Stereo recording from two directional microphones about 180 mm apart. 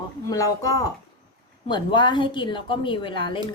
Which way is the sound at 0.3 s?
20° left (ahead or behind).